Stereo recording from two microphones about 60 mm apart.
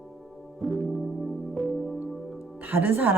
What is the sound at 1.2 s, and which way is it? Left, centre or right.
Music, centre.